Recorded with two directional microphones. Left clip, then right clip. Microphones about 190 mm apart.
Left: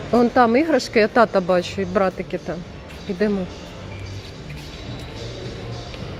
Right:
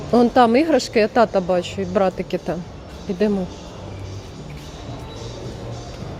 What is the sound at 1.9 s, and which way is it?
Speech, 10° right (ahead or behind).